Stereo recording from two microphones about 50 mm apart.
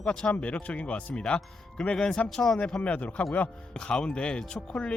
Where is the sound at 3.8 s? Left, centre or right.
Centre.